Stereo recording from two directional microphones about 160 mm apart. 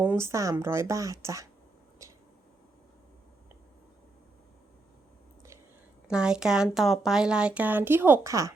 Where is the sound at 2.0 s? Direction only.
20° right (ahead or behind).